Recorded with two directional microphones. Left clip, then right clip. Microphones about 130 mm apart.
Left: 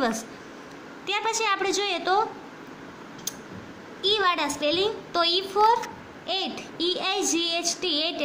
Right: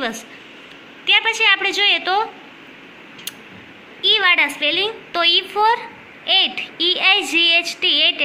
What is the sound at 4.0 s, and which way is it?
A woman's voice, 5° left (ahead or behind).